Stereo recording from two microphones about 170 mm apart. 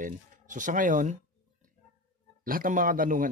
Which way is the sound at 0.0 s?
50° right (ahead or behind).